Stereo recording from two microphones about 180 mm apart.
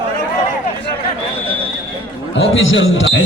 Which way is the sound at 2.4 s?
90° left.